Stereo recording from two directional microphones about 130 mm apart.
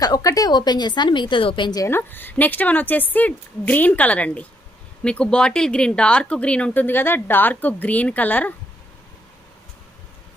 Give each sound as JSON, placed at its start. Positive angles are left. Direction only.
{"t": 0.0, "sound": "a woman's voice", "side_deg": 30}
{"t": 1.9, "sound": "speech", "side_deg": 15}